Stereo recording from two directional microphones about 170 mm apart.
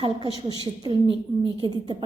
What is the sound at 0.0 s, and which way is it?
A woman's voice, 25° right (ahead or behind).